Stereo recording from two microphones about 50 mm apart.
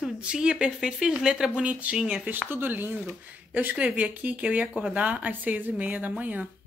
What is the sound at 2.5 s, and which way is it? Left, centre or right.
A woman's voice, right.